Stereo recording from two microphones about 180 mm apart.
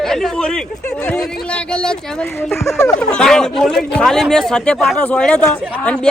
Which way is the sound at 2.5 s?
15° left (ahead or behind).